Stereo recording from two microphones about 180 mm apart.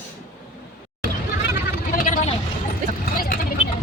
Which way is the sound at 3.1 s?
50° left (ahead or behind).